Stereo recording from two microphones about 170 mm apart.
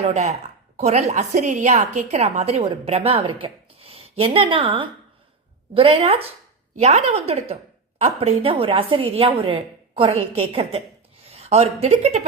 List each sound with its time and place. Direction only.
0.0 s a woman's voice: 45° right (ahead or behind)